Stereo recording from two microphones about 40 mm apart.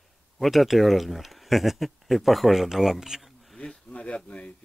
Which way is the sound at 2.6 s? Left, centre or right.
Centre.